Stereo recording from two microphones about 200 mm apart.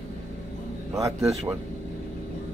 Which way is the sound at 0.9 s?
15° right (ahead or behind).